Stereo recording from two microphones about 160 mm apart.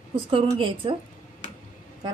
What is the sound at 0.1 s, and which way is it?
Speech, 30° right (ahead or behind).